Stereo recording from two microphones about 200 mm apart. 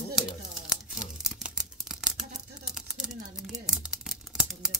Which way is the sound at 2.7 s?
Centre (ahead or behind).